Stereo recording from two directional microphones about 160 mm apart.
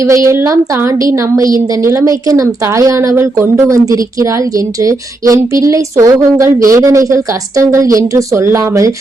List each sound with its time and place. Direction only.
0.0 s a woman's voice: 20° right (ahead or behind)